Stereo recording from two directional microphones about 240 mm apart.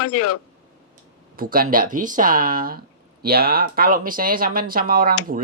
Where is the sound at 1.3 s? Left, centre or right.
Right.